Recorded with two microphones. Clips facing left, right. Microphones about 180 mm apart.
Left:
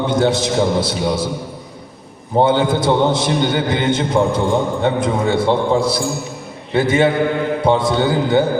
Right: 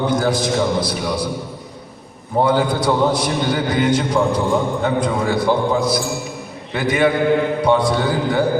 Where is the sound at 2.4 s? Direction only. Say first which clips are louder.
Left 2 dB; 25° left (ahead or behind).